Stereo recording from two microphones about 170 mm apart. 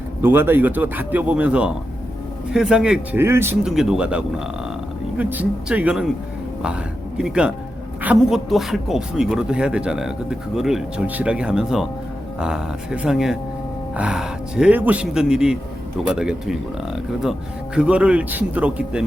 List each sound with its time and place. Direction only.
0.2 s a man's voice: 15° right (ahead or behind)
7.2 s speech: 5° right (ahead or behind)
17.7 s a man's voice: 5° right (ahead or behind)